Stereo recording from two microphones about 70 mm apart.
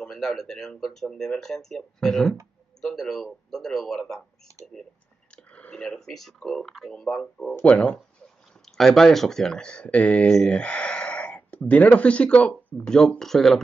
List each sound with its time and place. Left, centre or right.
0.0 s speech: centre
4.5 s speech: right
5.3 s clicking: centre
5.9 s speech: centre
6.9 s speech: centre
8.7 s speech: centre